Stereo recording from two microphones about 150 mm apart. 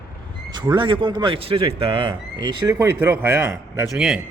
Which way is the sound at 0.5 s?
30° right (ahead or behind).